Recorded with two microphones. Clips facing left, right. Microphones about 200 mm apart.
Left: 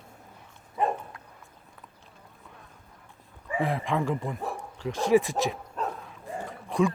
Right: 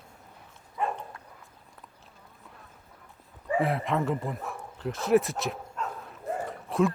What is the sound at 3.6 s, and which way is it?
Speech, 5° right (ahead or behind).